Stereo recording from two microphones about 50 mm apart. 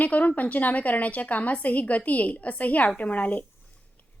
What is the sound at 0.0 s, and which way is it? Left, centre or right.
Speech, left.